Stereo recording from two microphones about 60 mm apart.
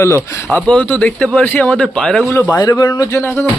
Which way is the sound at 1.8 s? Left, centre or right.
Centre.